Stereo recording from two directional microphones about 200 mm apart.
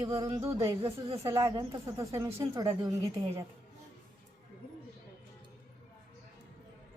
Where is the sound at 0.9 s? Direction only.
30° right (ahead or behind).